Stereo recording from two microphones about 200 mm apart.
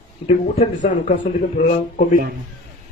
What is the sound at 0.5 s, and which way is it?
Speech, 35° left (ahead or behind).